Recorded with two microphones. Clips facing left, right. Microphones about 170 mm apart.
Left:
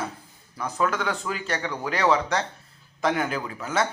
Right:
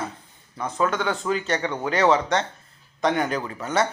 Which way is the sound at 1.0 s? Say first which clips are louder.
Right 4 dB; centre (ahead or behind).